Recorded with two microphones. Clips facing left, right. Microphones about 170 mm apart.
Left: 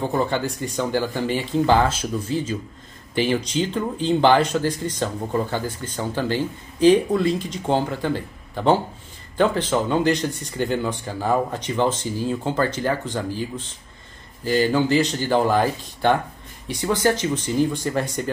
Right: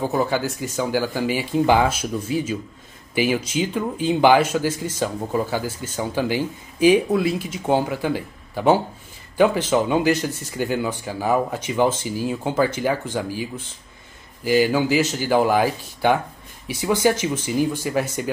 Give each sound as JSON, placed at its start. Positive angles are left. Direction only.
{"t": 0.0, "sound": "speech", "side_deg": -5}